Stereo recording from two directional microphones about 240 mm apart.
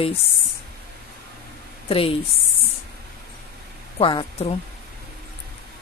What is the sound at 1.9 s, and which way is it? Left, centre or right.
Speech, left.